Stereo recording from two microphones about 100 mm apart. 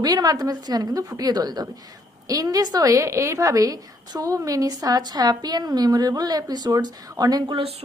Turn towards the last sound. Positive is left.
turn(degrees=-40)  # may be behind; listen again after turning